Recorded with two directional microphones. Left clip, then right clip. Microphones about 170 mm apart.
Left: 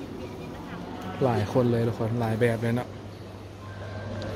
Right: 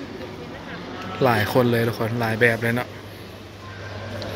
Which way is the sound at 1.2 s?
5° right (ahead or behind).